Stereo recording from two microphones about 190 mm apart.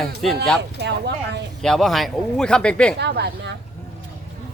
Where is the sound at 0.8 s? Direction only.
65° right (ahead or behind).